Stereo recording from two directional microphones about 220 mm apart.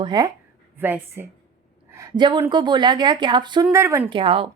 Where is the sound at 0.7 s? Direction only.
10° right (ahead or behind).